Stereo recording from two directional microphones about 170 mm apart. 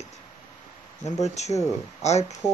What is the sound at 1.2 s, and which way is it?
Speech, 40° left (ahead or behind).